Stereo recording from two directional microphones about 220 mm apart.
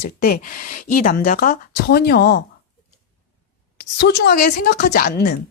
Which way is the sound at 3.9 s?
50° left (ahead or behind).